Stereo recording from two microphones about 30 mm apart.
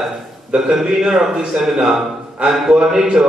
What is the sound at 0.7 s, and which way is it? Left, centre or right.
A man's voice, centre.